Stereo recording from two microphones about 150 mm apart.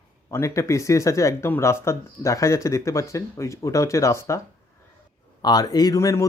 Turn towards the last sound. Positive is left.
turn(degrees=20)  # may be behind; listen again after turning